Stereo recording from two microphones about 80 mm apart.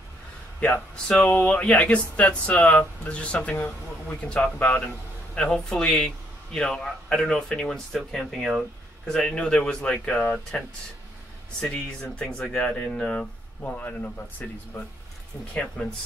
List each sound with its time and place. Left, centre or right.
0.6 s speech: centre
11.6 s speech: centre
13.6 s speech: left